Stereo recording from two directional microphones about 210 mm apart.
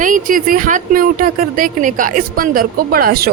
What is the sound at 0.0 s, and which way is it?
Speech, 40° right (ahead or behind).